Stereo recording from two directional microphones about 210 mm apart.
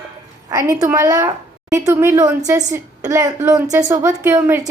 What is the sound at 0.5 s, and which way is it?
A woman's voice, 15° right (ahead or behind).